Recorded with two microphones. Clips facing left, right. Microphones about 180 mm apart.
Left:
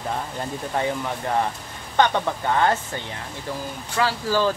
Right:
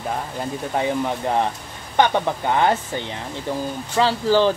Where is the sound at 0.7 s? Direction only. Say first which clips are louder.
Right 3 dB; 20° right (ahead or behind).